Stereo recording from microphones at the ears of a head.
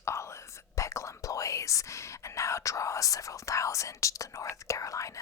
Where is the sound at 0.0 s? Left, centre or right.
Left.